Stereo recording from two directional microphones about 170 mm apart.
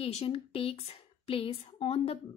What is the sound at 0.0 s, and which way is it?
A woman's voice, 35° left (ahead or behind).